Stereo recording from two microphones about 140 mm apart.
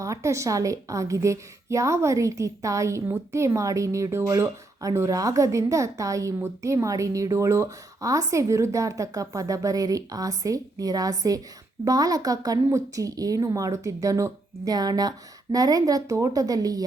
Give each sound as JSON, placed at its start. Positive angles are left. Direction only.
{"t": 0.0, "sound": "a woman's voice", "side_deg": -20}